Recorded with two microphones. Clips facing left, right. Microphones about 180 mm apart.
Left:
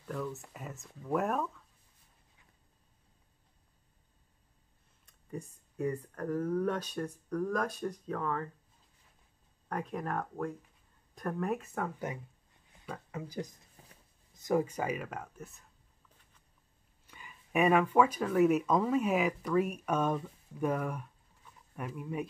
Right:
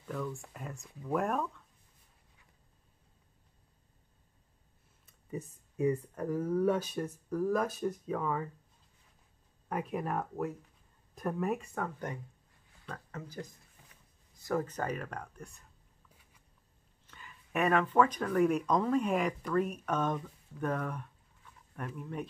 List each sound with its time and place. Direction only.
0.0 s speech: 5° left (ahead or behind)
5.0 s speech: 5° right (ahead or behind)
9.7 s speech: 5° right (ahead or behind); by 13.5 s 15° left (ahead or behind)
13.8 s a sound: 35° left (ahead or behind)
14.3 s speech: 15° left (ahead or behind); by 15.7 s centre (ahead or behind)
17.0 s speech: 10° left (ahead or behind)